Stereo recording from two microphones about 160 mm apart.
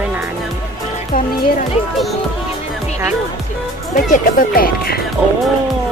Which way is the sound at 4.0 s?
60° left (ahead or behind).